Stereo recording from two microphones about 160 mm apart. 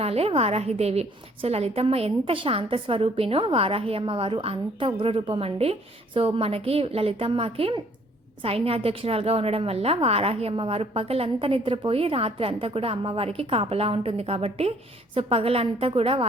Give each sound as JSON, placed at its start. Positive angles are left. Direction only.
{"t": 0.0, "sound": "a woman's voice", "side_deg": -40}